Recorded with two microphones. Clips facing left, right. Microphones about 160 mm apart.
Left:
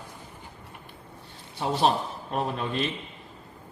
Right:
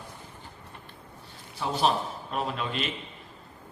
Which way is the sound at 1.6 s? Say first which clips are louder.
Left 2 dB; 30° left (ahead or behind).